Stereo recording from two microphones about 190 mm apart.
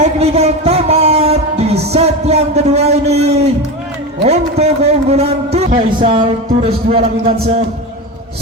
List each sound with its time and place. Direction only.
0.0 s music: 35° right (ahead or behind)
4.2 s a man's voice: 35° right (ahead or behind)